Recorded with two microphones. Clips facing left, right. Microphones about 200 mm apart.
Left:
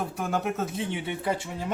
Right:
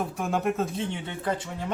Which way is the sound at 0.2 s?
Centre (ahead or behind).